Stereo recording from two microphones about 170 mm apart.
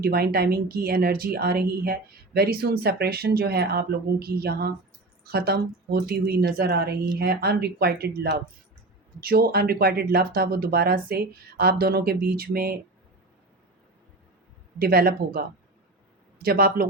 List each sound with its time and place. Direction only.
0.0 s a woman's voice: 65° right (ahead or behind)
14.8 s a woman's voice: 60° right (ahead or behind)